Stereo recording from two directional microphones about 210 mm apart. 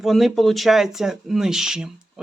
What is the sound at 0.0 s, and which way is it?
Speech, centre (ahead or behind).